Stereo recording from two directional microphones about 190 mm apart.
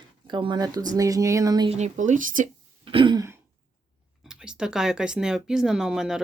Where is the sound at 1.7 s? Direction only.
35° right (ahead or behind).